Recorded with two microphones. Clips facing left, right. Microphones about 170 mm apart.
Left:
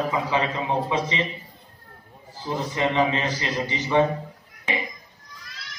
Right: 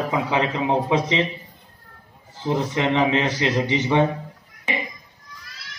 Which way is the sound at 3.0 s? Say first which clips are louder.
Right 3 dB; 75° right (ahead or behind).